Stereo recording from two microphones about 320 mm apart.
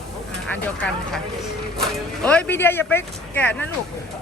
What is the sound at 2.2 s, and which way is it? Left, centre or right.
Speech, centre.